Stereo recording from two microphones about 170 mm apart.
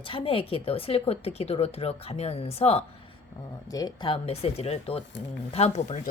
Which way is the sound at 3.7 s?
25° left (ahead or behind).